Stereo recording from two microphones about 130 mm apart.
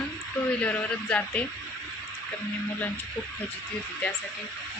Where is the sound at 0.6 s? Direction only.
10° left (ahead or behind).